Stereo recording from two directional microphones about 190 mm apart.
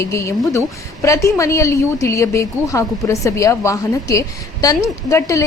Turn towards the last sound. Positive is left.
turn(degrees=15)  # may be behind; listen again after turning